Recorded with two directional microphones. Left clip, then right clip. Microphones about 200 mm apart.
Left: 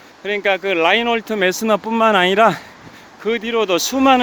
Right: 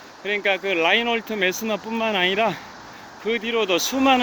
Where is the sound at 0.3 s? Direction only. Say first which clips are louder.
Left 4 dB; 40° left (ahead or behind).